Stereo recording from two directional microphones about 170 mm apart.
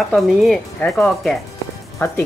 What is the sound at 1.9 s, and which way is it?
Speech, 15° left (ahead or behind).